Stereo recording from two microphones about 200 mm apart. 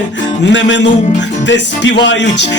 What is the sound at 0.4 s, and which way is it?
Music, 65° left (ahead or behind).